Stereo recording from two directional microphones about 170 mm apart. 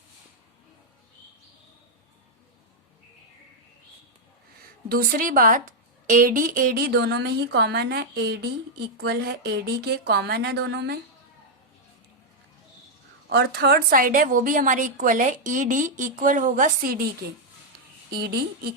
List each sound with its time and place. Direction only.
4.9 s a woman's voice: 60° right (ahead or behind); by 10.9 s 80° right
13.2 s a woman's voice: 70° right (ahead or behind)
18.1 s a woman's voice: 65° right (ahead or behind)